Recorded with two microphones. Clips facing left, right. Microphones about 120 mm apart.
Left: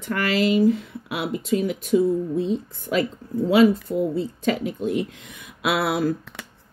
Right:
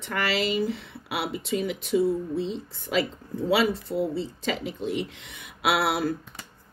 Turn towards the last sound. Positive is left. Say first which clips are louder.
# left 2 dB
turn(degrees=50)  # may be behind; listen again after turning